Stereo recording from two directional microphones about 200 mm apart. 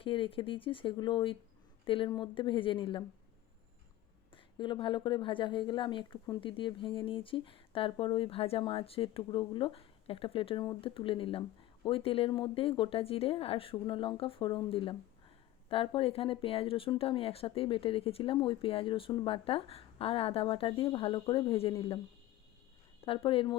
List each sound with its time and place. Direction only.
0.0 s a woman's voice: 25° left (ahead or behind)
4.5 s a woman's voice: 25° left (ahead or behind)
23.0 s a woman's voice: 25° left (ahead or behind)